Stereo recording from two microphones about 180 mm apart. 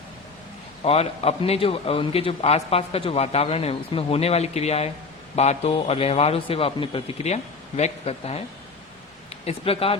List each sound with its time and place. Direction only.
0.9 s a man's voice: 35° left (ahead or behind)